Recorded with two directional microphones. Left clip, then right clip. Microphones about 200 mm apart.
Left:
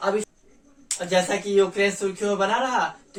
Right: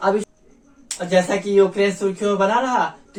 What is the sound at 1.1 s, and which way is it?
Speech, 15° left (ahead or behind).